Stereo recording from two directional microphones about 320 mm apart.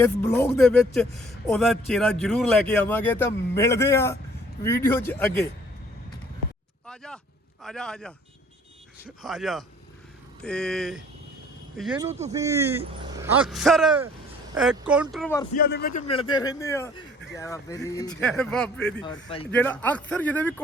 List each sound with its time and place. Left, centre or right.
0.0 s speech: centre
6.8 s vehicle: centre
7.6 s speech: centre
9.2 s speech: centre
12.2 s speech: centre
15.5 s speech: left; by 19.0 s centre
19.0 s speech: centre
19.5 s speech: centre